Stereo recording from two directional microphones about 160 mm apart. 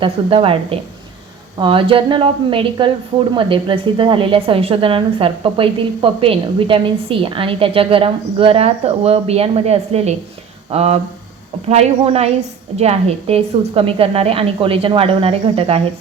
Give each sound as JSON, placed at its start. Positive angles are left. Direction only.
{"t": 0.0, "sound": "a woman's voice", "side_deg": -35}